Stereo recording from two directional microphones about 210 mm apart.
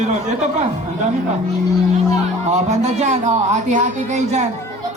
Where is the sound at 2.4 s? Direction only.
30° right (ahead or behind).